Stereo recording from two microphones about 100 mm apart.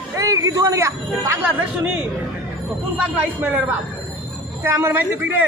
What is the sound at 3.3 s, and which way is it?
Speech, 15° right (ahead or behind).